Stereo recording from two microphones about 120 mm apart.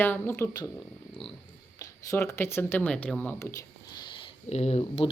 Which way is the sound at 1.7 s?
25° left (ahead or behind).